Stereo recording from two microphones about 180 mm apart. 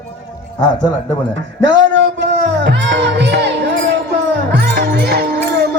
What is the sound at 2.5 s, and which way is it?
Music, 80° right.